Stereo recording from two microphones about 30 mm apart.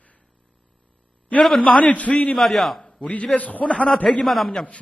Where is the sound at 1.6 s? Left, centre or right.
Left.